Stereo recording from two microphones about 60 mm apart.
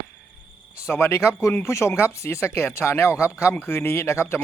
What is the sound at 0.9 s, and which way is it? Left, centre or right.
Speech, left.